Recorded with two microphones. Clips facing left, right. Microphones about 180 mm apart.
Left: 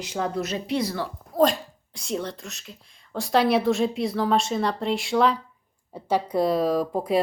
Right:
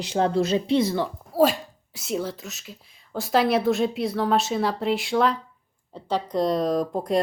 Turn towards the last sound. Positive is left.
turn(degrees=5)  # may be behind; listen again after turning